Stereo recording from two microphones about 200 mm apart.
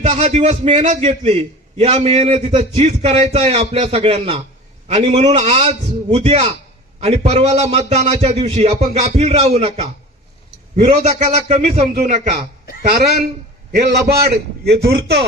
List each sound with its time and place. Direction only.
0.0 s a man's voice: 35° right (ahead or behind)
12.9 s a man's voice: 50° right (ahead or behind)